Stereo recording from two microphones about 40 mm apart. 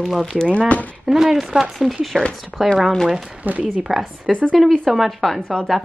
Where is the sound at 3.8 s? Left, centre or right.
Centre.